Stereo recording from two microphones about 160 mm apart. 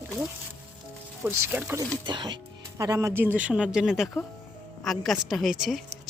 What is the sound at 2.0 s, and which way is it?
A woman's voice, 30° right (ahead or behind).